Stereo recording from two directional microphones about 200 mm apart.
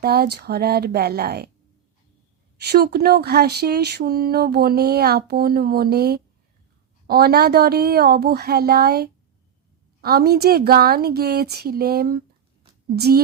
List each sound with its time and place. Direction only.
0.0 s speech: 50° right (ahead or behind)
2.6 s speech: 50° right (ahead or behind)